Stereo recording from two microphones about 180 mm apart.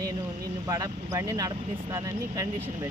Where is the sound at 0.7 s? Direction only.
20° right (ahead or behind).